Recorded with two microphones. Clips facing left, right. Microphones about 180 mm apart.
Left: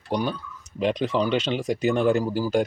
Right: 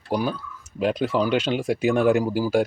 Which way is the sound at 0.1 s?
5° right (ahead or behind).